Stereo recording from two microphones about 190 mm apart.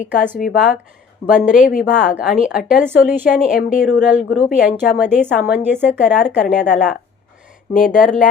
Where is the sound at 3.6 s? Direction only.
40° left (ahead or behind).